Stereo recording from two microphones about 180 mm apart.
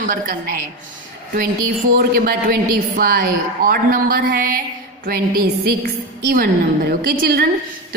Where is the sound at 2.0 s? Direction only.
55° right (ahead or behind).